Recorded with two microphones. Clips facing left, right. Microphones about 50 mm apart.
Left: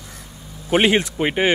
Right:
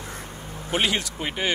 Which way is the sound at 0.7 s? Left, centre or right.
Left.